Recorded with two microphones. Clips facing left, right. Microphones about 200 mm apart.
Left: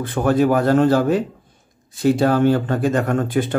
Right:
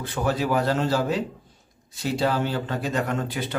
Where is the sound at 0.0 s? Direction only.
55° left (ahead or behind).